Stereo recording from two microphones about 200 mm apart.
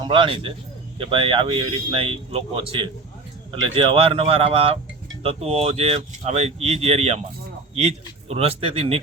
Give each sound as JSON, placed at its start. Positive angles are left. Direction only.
{"t": 0.0, "sound": "speech", "side_deg": -25}